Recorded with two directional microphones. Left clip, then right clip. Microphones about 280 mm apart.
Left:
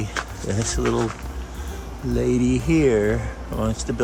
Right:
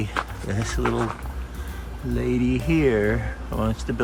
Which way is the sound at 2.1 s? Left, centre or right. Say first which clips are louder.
Left 3 dB; centre.